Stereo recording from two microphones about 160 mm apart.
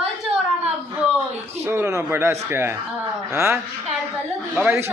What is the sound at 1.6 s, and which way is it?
Speech, 15° right (ahead or behind).